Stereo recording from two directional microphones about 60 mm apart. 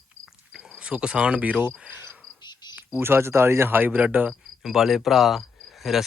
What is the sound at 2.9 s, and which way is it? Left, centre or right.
Speech, right.